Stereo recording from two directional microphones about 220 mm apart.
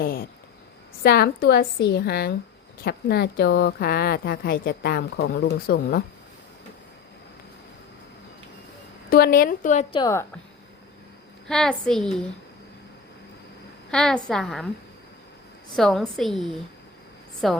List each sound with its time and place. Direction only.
0.0 s a woman's voice: 40° left (ahead or behind)
9.0 s a woman's voice: 45° left (ahead or behind)
9.9 s a woman's voice: 15° left (ahead or behind)
11.4 s a woman's voice: centre (ahead or behind)
13.9 s a woman's voice: 5° left (ahead or behind)
15.7 s a woman's voice: centre (ahead or behind)